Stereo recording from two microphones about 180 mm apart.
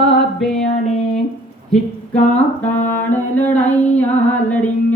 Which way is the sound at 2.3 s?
10° left (ahead or behind).